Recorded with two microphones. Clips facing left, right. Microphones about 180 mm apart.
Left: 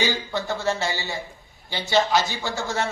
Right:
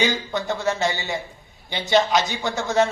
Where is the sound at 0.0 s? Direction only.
20° right (ahead or behind).